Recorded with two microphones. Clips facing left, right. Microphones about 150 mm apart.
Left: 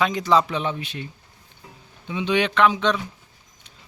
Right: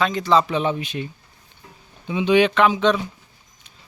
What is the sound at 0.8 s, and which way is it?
Speech, 15° right (ahead or behind).